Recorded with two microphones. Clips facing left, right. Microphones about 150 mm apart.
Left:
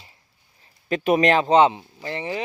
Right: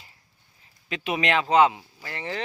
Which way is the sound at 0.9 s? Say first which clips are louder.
Left 7 dB; 45° left (ahead or behind).